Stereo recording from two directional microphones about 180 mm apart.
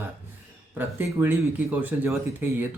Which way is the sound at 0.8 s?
10° right (ahead or behind).